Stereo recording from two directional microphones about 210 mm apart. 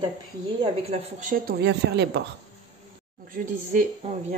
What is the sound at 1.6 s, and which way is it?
Speech, 55° right (ahead or behind).